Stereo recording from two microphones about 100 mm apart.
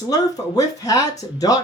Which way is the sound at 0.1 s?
40° left (ahead or behind).